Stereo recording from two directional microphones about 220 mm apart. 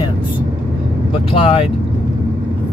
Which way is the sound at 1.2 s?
25° left (ahead or behind).